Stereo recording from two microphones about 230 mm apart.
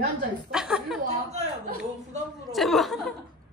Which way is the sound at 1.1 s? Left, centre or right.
Right.